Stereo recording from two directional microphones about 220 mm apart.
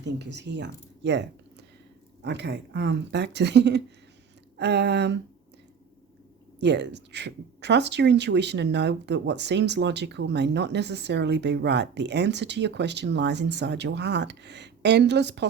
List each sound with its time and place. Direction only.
0.0 s speech: 50° right (ahead or behind)
6.6 s speech: 50° right (ahead or behind)